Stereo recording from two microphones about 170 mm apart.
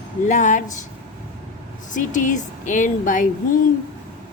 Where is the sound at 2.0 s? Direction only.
50° left (ahead or behind).